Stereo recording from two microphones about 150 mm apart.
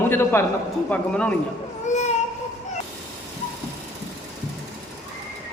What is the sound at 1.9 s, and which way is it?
Baby cry, 50° left (ahead or behind).